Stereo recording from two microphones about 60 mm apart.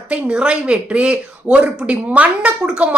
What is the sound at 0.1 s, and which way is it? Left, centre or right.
Speech, centre.